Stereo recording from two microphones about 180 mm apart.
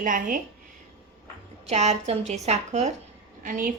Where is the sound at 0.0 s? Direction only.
50° right (ahead or behind).